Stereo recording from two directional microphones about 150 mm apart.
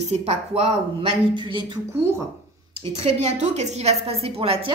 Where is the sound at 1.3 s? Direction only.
30° right (ahead or behind).